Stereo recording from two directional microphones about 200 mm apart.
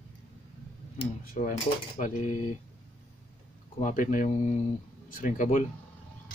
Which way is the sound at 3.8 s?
40° left (ahead or behind).